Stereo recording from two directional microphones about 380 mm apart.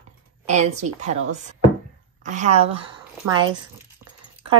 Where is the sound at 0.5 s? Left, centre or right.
Centre.